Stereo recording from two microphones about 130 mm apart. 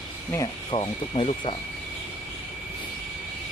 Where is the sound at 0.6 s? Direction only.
45° left (ahead or behind).